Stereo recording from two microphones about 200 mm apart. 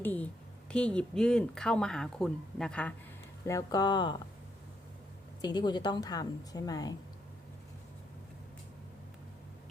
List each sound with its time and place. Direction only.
0.0 s a woman's voice: 10° left (ahead or behind)
3.4 s a woman's voice: 15° left (ahead or behind)
5.4 s a woman's voice: 20° left (ahead or behind)